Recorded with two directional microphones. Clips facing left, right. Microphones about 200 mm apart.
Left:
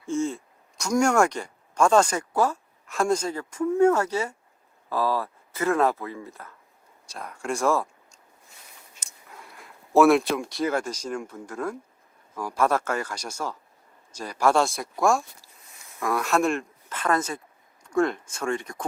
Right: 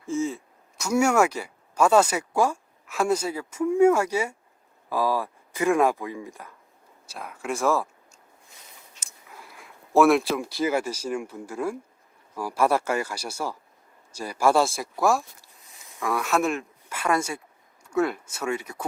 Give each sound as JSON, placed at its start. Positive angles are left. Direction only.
{"t": 0.0, "sound": "speech", "side_deg": 0}
{"t": 7.1, "sound": "speech", "side_deg": -5}